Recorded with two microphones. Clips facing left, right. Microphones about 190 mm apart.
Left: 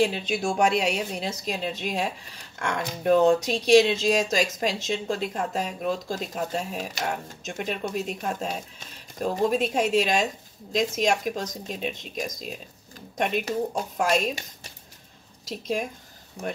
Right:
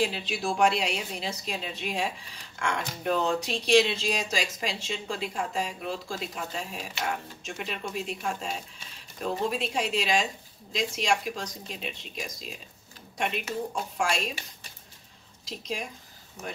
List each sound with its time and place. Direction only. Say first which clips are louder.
0.0 s speech: left 5 dB; 45° left (ahead or behind)
3.1 s speech: left 8 dB; 40° left (ahead or behind)
15.4 s speech: left 6 dB; 50° left (ahead or behind)